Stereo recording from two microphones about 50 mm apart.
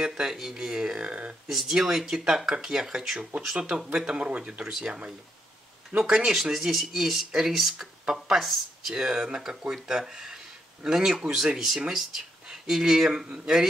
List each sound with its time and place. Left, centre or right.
0.0 s speech: centre
1.5 s speech: centre
9.0 s speech: centre